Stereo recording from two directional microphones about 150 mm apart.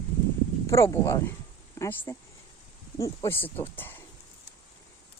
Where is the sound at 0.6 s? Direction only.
20° left (ahead or behind).